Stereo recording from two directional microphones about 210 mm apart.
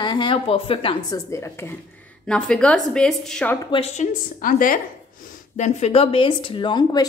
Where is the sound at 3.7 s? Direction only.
30° left (ahead or behind).